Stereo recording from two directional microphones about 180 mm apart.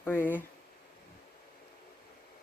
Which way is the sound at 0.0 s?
10° left (ahead or behind).